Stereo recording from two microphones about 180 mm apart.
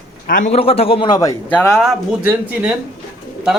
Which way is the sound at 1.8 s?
5° right (ahead or behind).